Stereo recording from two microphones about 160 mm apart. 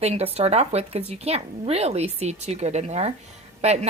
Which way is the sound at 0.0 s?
40° right (ahead or behind).